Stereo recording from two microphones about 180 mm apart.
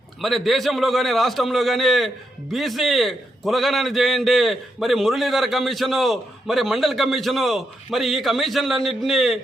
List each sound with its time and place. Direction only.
0.2 s a man's voice: centre (ahead or behind)